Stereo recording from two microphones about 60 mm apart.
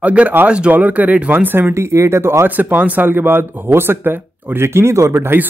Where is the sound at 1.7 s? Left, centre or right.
Right.